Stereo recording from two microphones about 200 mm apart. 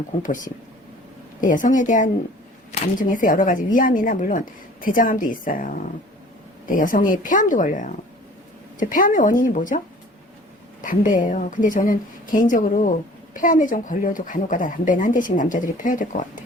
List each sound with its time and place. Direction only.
1.4 s speech: 40° left (ahead or behind)